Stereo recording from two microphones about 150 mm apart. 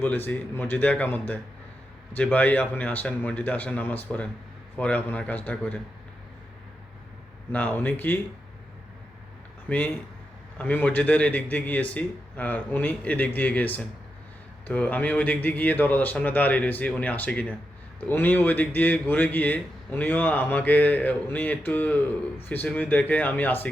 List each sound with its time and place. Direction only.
0.0 s a man's voice: 15° left (ahead or behind)
7.5 s a man's voice: 10° left (ahead or behind)
9.6 s a man's voice: 10° left (ahead or behind)